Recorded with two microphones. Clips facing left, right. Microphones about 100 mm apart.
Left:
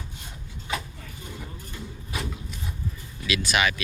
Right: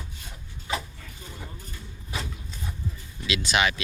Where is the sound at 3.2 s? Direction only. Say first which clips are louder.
Even; 20° right (ahead or behind).